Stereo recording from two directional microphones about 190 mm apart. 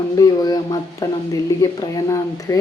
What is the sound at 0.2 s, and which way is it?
Speech, 20° left (ahead or behind).